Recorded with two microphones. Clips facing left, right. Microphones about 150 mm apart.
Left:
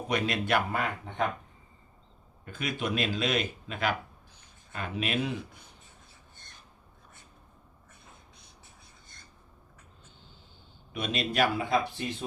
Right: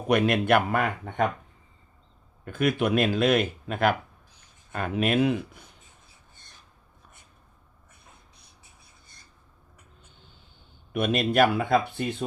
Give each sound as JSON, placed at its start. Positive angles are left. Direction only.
{"t": 0.1, "sound": "speech", "side_deg": -60}
{"t": 2.4, "sound": "speech", "side_deg": -55}
{"t": 10.9, "sound": "speech", "side_deg": -55}